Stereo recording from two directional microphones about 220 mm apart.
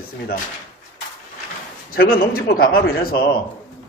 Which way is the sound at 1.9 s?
40° left (ahead or behind).